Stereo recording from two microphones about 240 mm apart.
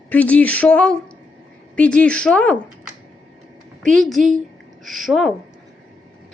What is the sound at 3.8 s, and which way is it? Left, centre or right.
Speech, centre.